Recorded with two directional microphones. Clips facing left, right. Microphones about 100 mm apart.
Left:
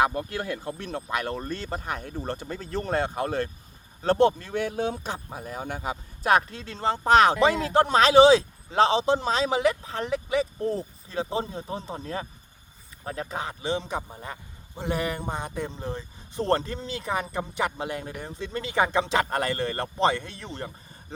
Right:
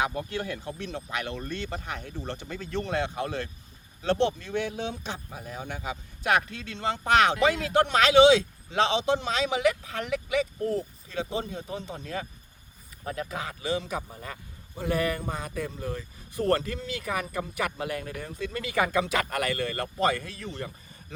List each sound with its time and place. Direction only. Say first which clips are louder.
0.0 s speech: left 4 dB; 45° left (ahead or behind)